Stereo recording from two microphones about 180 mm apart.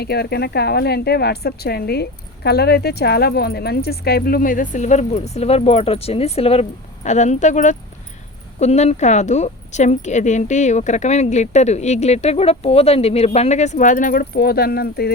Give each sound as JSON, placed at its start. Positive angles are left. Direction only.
{"t": 0.0, "sound": "a woman's voice", "side_deg": 60}